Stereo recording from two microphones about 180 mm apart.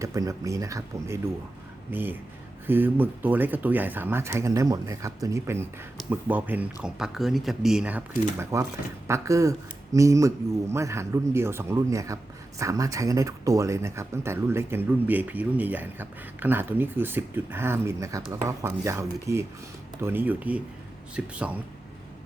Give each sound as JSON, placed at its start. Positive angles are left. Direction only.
{"t": 0.0, "sound": "speech", "side_deg": -20}
{"t": 8.5, "sound": "speech", "side_deg": -15}